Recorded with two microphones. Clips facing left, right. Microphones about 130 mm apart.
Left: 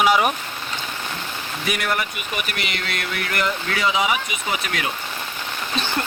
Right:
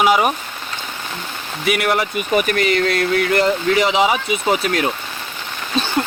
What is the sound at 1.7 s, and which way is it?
Speech, 80° right.